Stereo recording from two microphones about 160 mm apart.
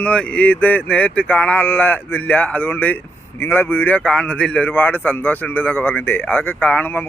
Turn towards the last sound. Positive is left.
turn(degrees=10)  # may be behind; listen again after turning